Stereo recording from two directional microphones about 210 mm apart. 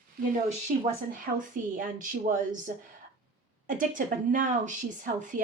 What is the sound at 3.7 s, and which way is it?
Speech, 40° right (ahead or behind).